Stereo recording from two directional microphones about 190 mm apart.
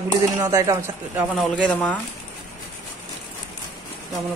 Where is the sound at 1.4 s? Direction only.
5° left (ahead or behind).